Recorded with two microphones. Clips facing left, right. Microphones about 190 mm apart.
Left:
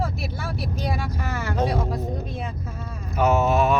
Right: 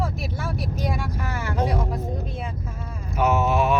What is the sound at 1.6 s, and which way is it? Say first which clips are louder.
Speech: left 1 dB; 30° left (ahead or behind).